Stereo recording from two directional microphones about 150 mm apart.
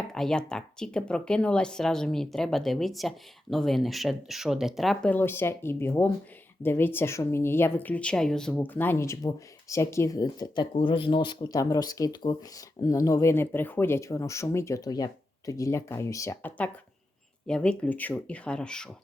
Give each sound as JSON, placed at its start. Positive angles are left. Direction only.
{"t": 0.1, "sound": "speech", "side_deg": 5}
{"t": 5.1, "sound": "speech", "side_deg": 15}